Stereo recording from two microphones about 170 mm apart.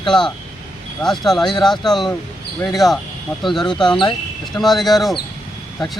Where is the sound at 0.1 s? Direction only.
5° left (ahead or behind).